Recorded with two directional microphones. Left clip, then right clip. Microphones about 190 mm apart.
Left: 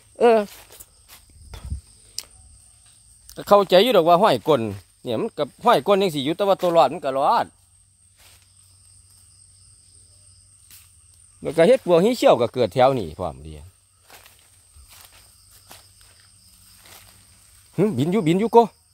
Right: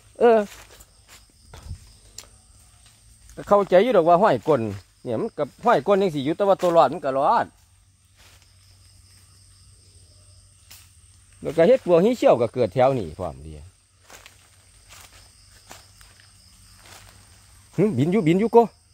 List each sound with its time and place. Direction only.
0.1 s a sound: 20° left (ahead or behind)
2.2 s tick-tock: 15° left (ahead or behind)
3.3 s speech: 30° left (ahead or behind); by 7.4 s 10° left (ahead or behind)
11.4 s speech: 25° left (ahead or behind)
14.0 s walk: centre (ahead or behind)
16.8 s a sound: centre (ahead or behind)
17.7 s speech: 15° left (ahead or behind)